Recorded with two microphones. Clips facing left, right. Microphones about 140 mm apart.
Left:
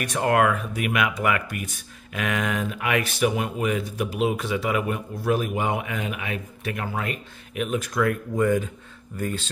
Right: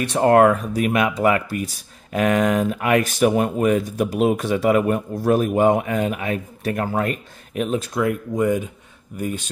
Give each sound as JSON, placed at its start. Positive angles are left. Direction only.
{"t": 0.0, "sound": "speech", "side_deg": -30}